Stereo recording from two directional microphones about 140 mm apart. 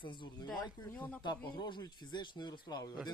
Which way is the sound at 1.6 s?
30° left (ahead or behind).